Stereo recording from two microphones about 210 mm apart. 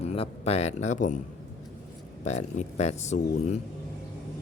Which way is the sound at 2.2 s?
35° left (ahead or behind).